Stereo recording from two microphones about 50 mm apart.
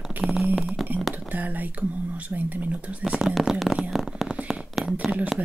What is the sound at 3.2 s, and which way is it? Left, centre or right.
Speech, centre.